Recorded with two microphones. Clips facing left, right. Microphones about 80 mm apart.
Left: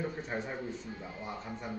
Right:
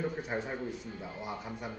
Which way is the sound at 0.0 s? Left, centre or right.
Centre.